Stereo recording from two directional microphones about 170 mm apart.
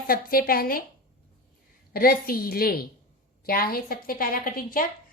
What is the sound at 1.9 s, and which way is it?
A woman's voice, 60° left (ahead or behind).